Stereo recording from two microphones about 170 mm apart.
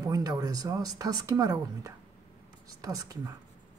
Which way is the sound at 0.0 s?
20° right (ahead or behind).